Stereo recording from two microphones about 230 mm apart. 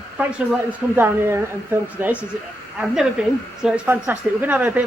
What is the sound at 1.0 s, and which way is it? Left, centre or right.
A man's voice, centre.